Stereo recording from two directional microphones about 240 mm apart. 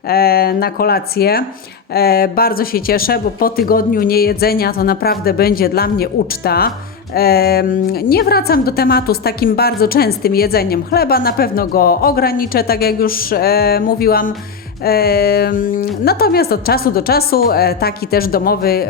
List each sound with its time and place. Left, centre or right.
0.1 s speech: left